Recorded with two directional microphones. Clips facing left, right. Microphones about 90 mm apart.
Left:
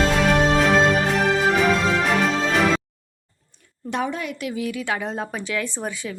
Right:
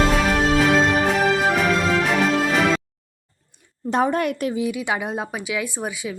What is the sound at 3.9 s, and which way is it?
Speech, 45° right (ahead or behind).